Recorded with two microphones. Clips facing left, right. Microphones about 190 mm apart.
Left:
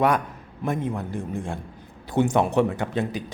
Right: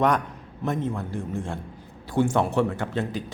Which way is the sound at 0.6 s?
10° left (ahead or behind).